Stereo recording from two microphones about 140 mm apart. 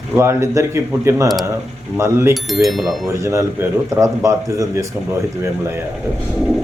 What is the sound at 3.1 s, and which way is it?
A man's voice, 20° right (ahead or behind).